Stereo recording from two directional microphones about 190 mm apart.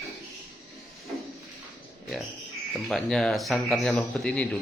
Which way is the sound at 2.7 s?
Centre (ahead or behind).